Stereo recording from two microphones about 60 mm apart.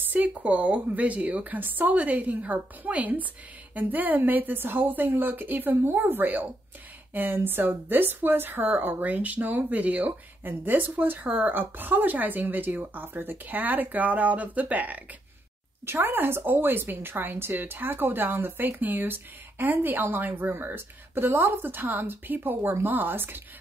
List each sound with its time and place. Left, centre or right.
0.1 s a woman's voice: right
15.8 s a woman's voice: right